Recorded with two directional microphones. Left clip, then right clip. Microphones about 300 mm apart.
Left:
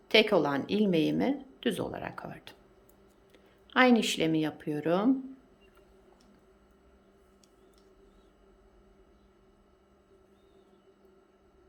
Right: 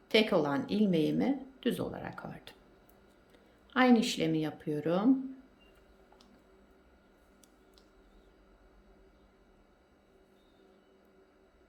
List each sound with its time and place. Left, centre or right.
0.1 s a woman's voice: centre
3.7 s a woman's voice: centre